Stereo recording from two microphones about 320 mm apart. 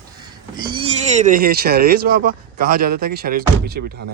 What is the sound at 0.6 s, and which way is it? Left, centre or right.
Speech, centre.